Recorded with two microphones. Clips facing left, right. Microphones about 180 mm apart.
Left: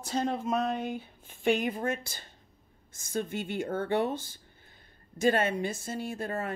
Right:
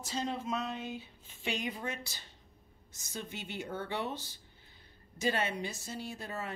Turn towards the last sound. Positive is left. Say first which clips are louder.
# left 7 dB
turn(degrees=50)  # may be behind; listen again after turning